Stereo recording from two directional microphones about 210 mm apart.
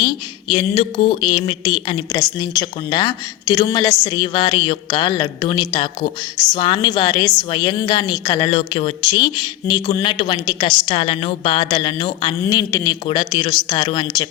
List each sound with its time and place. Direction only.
0.0 s speech: 25° left (ahead or behind)